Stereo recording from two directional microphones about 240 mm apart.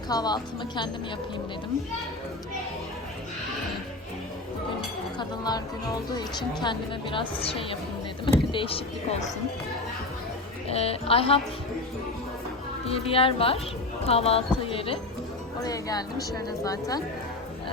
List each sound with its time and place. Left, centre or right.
0.1 s speech: centre
5.1 s speech: centre
10.7 s speech: left
12.8 s speech: left